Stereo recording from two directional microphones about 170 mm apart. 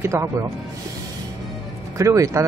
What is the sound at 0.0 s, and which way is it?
Speech, 15° right (ahead or behind).